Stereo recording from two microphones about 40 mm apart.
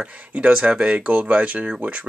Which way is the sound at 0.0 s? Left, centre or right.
Right.